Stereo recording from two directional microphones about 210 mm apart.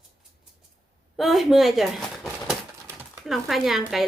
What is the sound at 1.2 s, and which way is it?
Speech, centre (ahead or behind).